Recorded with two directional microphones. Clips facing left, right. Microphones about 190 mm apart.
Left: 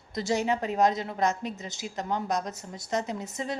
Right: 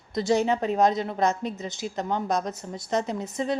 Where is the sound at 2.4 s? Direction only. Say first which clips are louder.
Right 4 dB; 25° right (ahead or behind).